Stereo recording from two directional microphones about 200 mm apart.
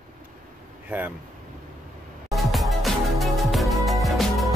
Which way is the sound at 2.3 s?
Centre (ahead or behind).